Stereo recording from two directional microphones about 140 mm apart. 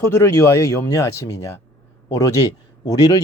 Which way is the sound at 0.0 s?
20° left (ahead or behind).